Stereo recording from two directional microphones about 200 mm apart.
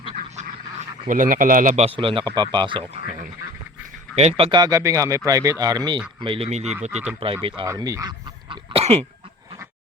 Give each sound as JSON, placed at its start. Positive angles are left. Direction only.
{"t": 0.2, "sound": "a sound", "side_deg": -35}
{"t": 2.3, "sound": "speech", "side_deg": -20}
{"t": 4.1, "sound": "speech", "side_deg": -30}
{"t": 7.4, "sound": "speech", "side_deg": -20}